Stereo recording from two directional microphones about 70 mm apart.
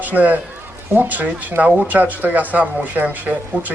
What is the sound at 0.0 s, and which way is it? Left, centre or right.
A man's voice, right.